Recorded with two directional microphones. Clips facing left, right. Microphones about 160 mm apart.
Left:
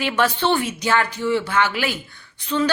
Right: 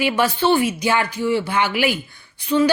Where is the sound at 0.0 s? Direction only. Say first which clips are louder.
Right 2 dB; 10° right (ahead or behind).